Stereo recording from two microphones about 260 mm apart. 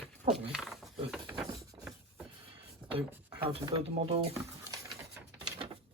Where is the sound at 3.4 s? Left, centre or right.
Centre.